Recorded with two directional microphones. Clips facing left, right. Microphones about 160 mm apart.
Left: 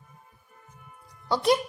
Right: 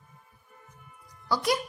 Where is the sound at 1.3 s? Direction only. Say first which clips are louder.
Left 4 dB; 25° left (ahead or behind).